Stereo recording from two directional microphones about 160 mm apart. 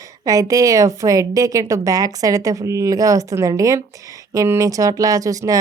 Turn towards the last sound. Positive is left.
turn(degrees=-20)  # may be behind; listen again after turning